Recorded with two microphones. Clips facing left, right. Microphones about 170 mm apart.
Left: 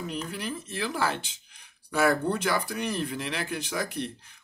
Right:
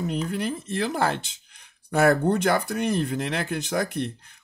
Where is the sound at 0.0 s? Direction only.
50° right (ahead or behind).